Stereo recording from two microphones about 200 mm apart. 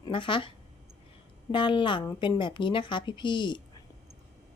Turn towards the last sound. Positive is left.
turn(degrees=25)  # may be behind; listen again after turning